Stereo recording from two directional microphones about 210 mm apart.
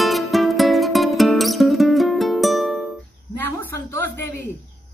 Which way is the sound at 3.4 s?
10° left (ahead or behind).